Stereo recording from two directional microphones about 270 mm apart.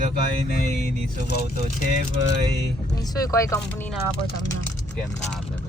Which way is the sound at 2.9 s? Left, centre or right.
Centre.